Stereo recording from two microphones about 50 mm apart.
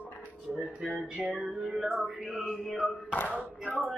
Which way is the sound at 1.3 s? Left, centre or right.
Centre.